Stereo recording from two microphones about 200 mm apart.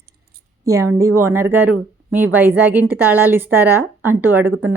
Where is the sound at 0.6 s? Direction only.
15° right (ahead or behind).